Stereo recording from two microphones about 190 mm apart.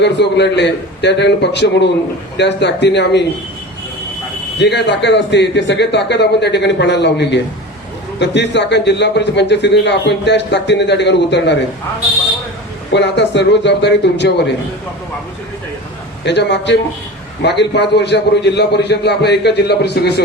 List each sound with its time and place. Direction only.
0.0 s a man's voice: 65° left (ahead or behind)
4.5 s a man's voice: 65° left (ahead or behind)
12.9 s a man's voice: 65° left (ahead or behind)
16.2 s a man's voice: 65° left (ahead or behind)